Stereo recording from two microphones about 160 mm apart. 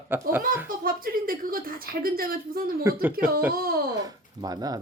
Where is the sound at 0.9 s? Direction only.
65° right (ahead or behind).